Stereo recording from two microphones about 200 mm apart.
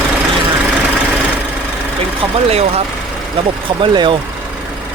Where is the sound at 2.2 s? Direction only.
30° right (ahead or behind).